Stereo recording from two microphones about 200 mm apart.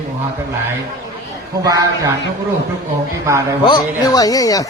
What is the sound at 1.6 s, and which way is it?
Speech, 15° right (ahead or behind).